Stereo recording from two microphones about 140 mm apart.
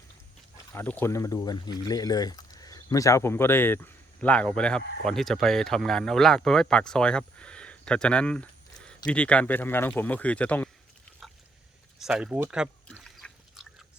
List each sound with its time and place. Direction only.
0.7 s speech: 15° left (ahead or behind)
11.9 s speech: 5° right (ahead or behind)
13.0 s drip: centre (ahead or behind)